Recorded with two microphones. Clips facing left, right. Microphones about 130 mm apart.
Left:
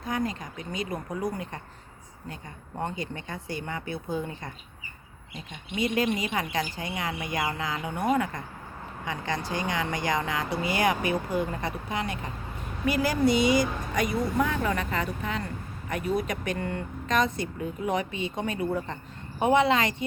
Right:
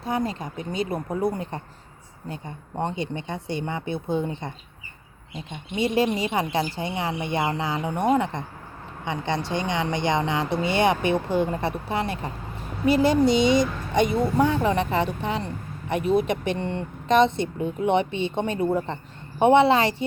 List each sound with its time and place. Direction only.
0.0 s speech: 30° right (ahead or behind)
5.7 s a woman's voice: 30° right (ahead or behind)